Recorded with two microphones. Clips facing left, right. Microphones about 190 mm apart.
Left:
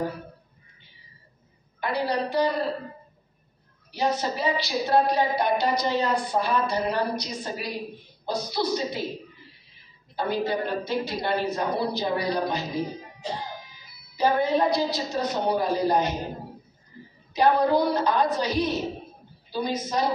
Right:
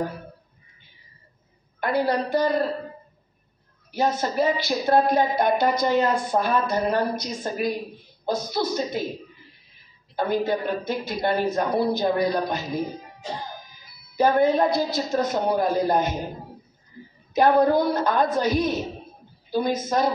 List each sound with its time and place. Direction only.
1.8 s a woman's voice: 50° right (ahead or behind)
3.9 s a woman's voice: 50° right (ahead or behind)
10.1 s a woman's voice: 50° right (ahead or behind)
14.1 s a woman's voice: 50° right (ahead or behind)
17.3 s a woman's voice: 50° right (ahead or behind)